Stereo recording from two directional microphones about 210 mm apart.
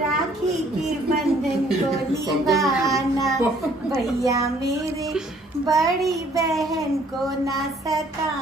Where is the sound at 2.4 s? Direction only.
Centre (ahead or behind).